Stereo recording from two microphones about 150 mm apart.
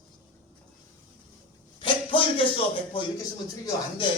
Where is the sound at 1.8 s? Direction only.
35° left (ahead or behind).